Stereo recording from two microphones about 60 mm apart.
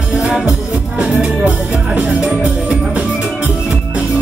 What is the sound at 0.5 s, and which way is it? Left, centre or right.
Music, centre.